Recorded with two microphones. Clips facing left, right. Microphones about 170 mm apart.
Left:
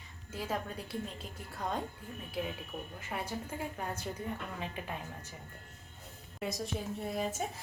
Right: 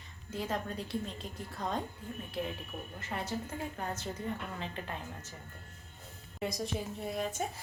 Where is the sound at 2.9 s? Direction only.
10° left (ahead or behind).